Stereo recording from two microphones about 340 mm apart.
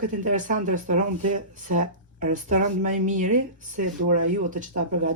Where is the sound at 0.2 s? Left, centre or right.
Right.